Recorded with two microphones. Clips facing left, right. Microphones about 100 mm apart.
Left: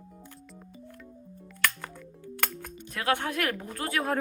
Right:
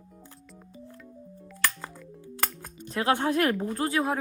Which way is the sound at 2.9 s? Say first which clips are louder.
Right 4 dB; 20° right (ahead or behind).